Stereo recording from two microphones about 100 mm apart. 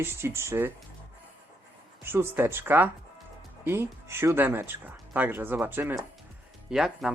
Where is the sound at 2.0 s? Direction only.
25° right (ahead or behind).